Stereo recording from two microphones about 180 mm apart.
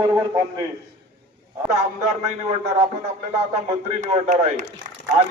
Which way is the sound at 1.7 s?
40° right (ahead or behind).